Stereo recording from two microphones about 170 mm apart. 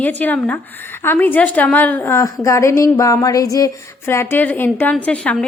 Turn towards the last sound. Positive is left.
turn(degrees=10)  # may be behind; listen again after turning